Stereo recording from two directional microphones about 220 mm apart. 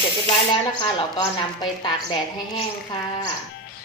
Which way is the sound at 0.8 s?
20° left (ahead or behind).